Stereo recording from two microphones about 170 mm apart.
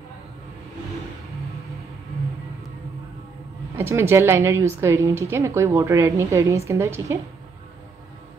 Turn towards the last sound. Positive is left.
turn(degrees=-15)  # may be behind; listen again after turning